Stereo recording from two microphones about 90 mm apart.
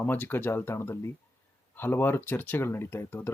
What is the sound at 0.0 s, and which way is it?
Speech, 20° left (ahead or behind).